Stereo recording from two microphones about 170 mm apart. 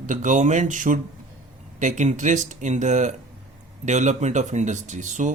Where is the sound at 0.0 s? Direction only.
50° right (ahead or behind).